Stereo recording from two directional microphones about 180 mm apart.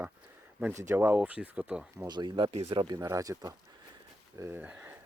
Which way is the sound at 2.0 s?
25° right (ahead or behind).